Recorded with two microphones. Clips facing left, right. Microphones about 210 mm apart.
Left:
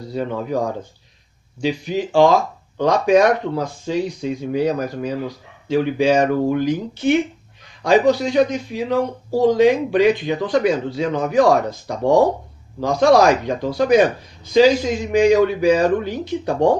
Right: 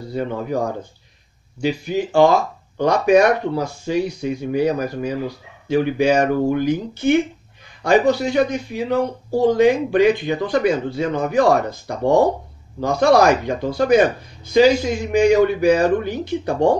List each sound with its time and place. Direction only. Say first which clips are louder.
0.1 s a man's voice: even; centre (ahead or behind)
7.8 s a man's voice: left 1 dB; 5° right (ahead or behind)